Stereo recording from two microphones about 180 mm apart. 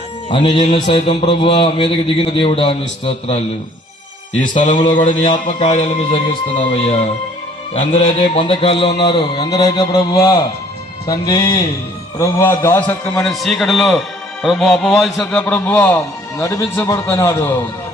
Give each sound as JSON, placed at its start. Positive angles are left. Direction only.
{"t": 0.3, "sound": "a man's voice", "side_deg": 30}
{"t": 4.4, "sound": "mantra", "side_deg": 45}
{"t": 4.9, "sound": "a man's voice", "side_deg": 25}